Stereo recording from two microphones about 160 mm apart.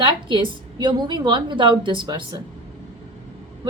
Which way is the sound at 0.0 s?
30° right (ahead or behind).